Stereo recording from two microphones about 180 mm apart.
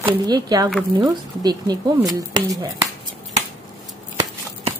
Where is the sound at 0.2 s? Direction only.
20° right (ahead or behind).